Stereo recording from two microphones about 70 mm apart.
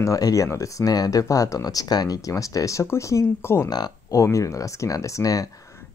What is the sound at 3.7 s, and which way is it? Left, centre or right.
Speech, left.